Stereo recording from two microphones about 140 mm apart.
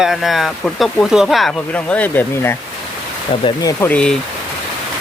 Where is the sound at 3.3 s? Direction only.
35° left (ahead or behind).